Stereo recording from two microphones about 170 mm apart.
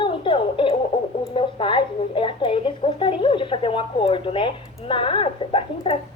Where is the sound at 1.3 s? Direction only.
30° left (ahead or behind).